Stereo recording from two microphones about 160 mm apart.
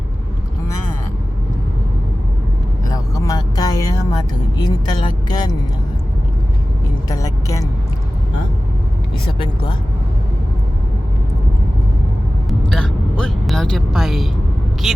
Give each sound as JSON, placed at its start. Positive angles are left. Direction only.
{"t": 2.9, "sound": "vehicle", "side_deg": 20}
{"t": 7.1, "sound": "speech", "side_deg": 20}
{"t": 12.5, "sound": "vehicle", "side_deg": 5}
{"t": 14.8, "sound": "speech", "side_deg": 0}